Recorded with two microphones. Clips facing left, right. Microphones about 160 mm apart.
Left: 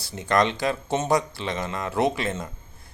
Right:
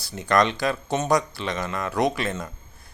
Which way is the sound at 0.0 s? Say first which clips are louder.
Right 1 dB; 25° left (ahead or behind).